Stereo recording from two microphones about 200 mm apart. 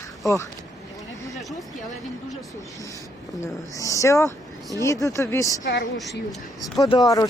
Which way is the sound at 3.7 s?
15° left (ahead or behind).